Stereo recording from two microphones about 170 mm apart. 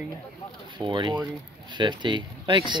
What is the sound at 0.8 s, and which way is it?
Speech, 30° right (ahead or behind).